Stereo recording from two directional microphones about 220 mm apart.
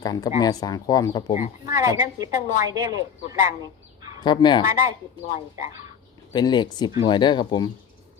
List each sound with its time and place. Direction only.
0.0 s speech: 15° left (ahead or behind)
1.3 s speech: 35° left (ahead or behind)
1.7 s a woman's voice: 15° right (ahead or behind)
4.2 s speech: 20° left (ahead or behind)
5.3 s speech: 35° left (ahead or behind)
6.3 s speech: 20° left (ahead or behind)